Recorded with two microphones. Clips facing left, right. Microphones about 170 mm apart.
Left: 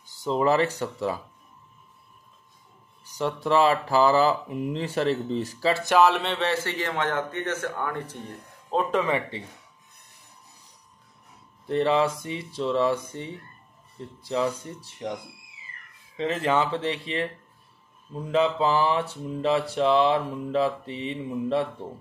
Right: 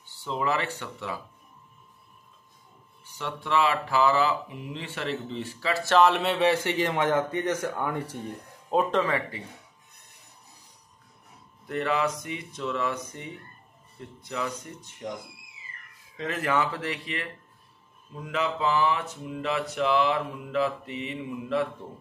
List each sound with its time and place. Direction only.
0.0 s speech: 40° left (ahead or behind)
3.1 s speech: 35° left (ahead or behind)
5.9 s a man's voice: 5° left (ahead or behind); by 8.2 s 10° right (ahead or behind)
8.9 s mantra: 20° left (ahead or behind)
11.6 s mantra: 30° left (ahead or behind)
14.2 s speech: 30° left (ahead or behind)
16.2 s mantra: 25° left (ahead or behind)